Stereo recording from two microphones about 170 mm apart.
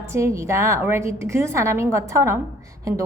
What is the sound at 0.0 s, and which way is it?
A woman's voice, 15° right (ahead or behind).